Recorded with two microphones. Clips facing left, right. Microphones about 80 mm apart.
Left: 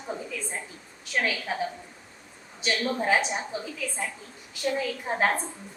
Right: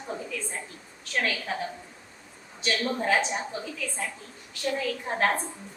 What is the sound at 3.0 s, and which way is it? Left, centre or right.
Speech, centre.